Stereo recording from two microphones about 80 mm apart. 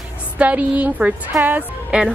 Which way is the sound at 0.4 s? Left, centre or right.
Centre.